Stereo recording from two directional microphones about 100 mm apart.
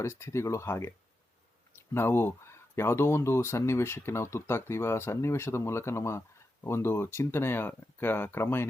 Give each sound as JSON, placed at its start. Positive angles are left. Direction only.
{"t": 0.0, "sound": "speech", "side_deg": 25}